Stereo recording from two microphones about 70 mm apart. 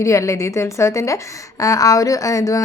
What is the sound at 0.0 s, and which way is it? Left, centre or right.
A woman's voice, left.